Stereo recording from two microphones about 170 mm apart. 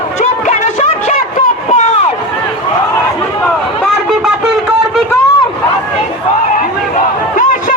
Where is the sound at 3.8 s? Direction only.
Centre (ahead or behind).